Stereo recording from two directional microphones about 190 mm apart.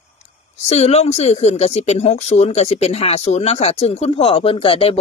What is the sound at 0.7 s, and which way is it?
Speech, 35° left (ahead or behind).